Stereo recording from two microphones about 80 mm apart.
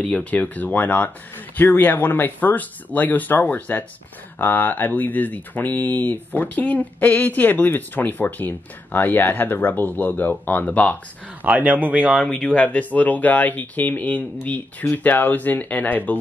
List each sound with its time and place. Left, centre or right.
0.0 s speech: centre
11.4 s speech: centre
12.2 s speech: centre